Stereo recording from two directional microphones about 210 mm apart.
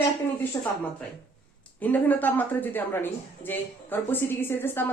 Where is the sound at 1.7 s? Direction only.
10° left (ahead or behind).